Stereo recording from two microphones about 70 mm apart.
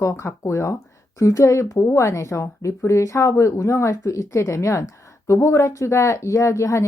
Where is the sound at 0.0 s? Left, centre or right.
Left.